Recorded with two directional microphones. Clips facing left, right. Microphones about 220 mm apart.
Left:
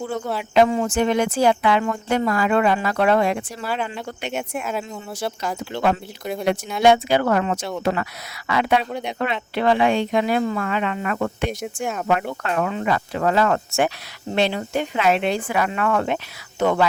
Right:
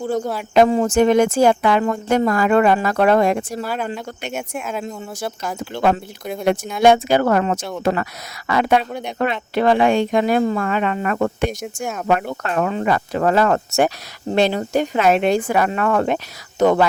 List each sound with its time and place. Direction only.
0.5 s speech: 40° right (ahead or behind)
4.3 s speech: centre (ahead or behind)
6.8 s speech: 45° right (ahead or behind)
8.8 s speech: centre (ahead or behind)
9.1 s speech: 45° right (ahead or behind)
11.6 s speech: centre (ahead or behind)
12.4 s speech: 40° right (ahead or behind)